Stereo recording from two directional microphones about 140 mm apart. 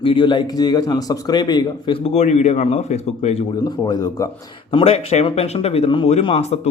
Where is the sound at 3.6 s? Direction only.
30° left (ahead or behind).